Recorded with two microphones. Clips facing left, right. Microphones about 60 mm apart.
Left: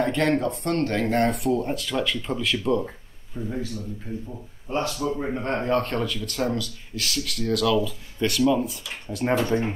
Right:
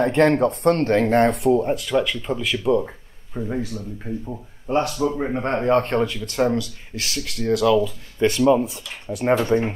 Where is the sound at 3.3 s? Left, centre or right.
Right.